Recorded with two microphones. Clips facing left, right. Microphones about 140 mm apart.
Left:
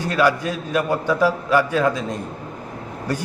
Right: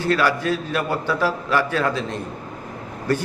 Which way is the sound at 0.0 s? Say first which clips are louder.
Left 1 dB; 15° left (ahead or behind).